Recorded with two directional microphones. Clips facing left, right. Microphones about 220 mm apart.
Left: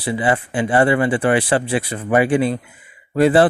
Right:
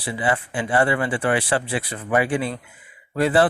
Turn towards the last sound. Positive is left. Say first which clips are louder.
# left 5 dB
turn(degrees=20)  # may be behind; listen again after turning